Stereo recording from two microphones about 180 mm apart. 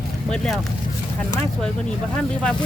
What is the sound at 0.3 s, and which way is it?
Speech, centre (ahead or behind).